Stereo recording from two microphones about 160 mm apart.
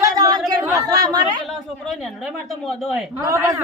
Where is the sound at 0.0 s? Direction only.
25° right (ahead or behind).